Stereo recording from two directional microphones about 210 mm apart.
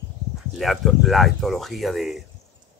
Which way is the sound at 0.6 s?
Centre (ahead or behind).